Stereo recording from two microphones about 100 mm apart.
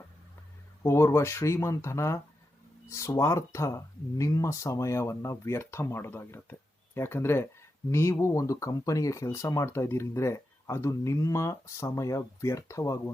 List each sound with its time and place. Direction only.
0.8 s speech: 30° left (ahead or behind)